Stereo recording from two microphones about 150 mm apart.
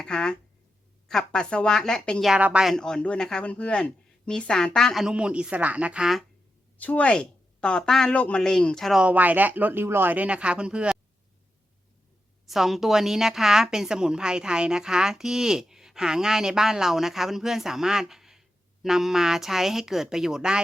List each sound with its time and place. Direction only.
0.0 s a sound: 5° left (ahead or behind)
1.0 s a woman's voice: 5° left (ahead or behind)
2.3 s a woman's voice: 5° right (ahead or behind)
6.7 s a woman's voice: 10° left (ahead or behind); by 10.9 s 5° right (ahead or behind)
12.5 s a woman's voice: centre (ahead or behind)